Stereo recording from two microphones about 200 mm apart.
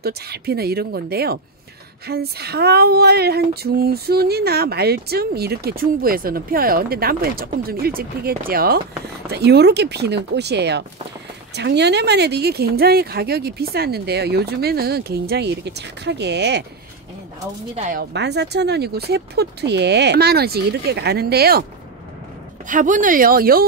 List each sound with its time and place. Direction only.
0.0 s female singing: 50° right (ahead or behind)
9.3 s speech: 55° right (ahead or behind)
11.5 s female singing: 55° right (ahead or behind)
17.7 s a woman's voice: 35° right (ahead or behind)
18.1 s speech: 60° right (ahead or behind)
22.7 s female singing: 40° right (ahead or behind)